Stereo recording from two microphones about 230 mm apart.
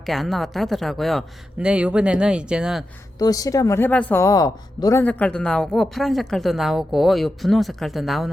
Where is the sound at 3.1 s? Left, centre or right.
Centre.